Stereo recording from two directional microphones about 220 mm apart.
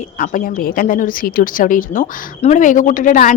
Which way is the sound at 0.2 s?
40° left (ahead or behind).